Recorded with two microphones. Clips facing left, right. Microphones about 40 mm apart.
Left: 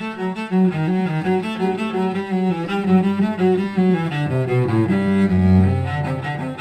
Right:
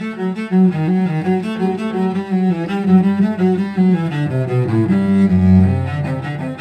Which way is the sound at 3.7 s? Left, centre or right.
Centre.